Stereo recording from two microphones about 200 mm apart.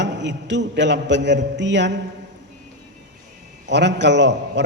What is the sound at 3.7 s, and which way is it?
Speech, 60° right (ahead or behind).